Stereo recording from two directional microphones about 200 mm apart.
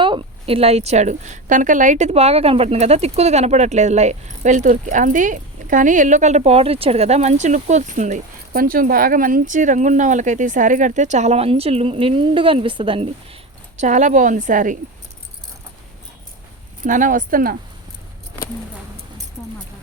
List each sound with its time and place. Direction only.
0.0 s a woman's voice: 25° right (ahead or behind)
13.7 s a woman's voice: 40° right (ahead or behind)
16.8 s a woman's voice: 40° right (ahead or behind)